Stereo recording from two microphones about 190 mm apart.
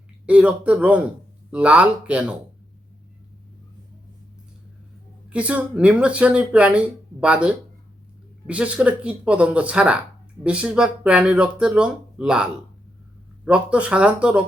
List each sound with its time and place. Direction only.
0.3 s speech: 5° right (ahead or behind)
5.3 s speech: 5° right (ahead or behind)